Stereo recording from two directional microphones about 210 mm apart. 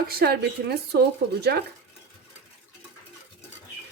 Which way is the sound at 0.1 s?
45° right (ahead or behind).